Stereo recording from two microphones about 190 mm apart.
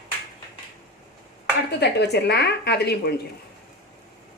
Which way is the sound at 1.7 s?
60° left (ahead or behind).